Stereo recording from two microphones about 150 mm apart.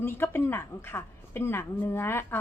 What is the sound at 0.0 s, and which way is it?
A woman's voice, 15° left (ahead or behind).